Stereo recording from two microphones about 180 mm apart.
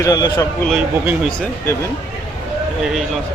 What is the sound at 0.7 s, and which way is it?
Speech, 5° right (ahead or behind).